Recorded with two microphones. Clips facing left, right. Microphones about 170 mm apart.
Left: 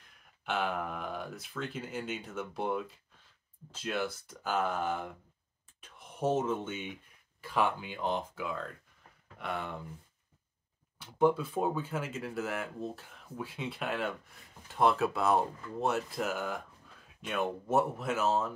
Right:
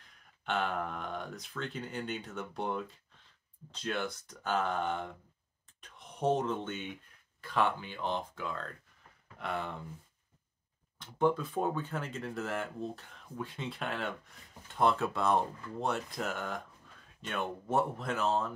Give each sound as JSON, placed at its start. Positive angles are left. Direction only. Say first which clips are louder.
{"t": 0.5, "sound": "speech", "louder": "even", "side_deg": 5}
{"t": 11.0, "sound": "speech", "louder": "left 2 dB", "side_deg": 10}